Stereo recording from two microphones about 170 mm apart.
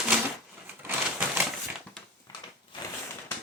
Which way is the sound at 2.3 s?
20° left (ahead or behind).